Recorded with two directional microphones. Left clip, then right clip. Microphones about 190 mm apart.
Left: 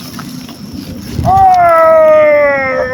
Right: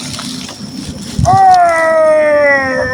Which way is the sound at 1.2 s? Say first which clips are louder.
Even; 15° right (ahead or behind).